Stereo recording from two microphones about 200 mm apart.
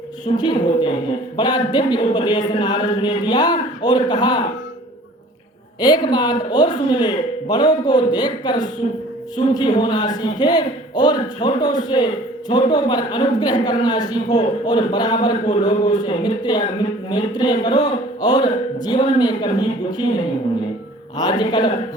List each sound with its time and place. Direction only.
0.3 s a man's voice: 20° left (ahead or behind)
5.8 s a man's voice: 20° left (ahead or behind)
21.2 s a man's voice: 20° left (ahead or behind)